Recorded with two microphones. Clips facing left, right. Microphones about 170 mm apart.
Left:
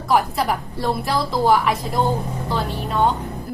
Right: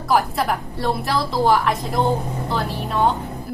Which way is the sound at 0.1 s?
Centre (ahead or behind).